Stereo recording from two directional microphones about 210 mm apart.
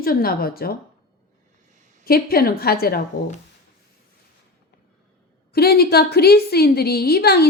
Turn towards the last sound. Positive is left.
turn(degrees=50)  # may be behind; listen again after turning